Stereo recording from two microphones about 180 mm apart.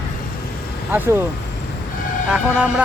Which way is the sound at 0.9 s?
10° right (ahead or behind).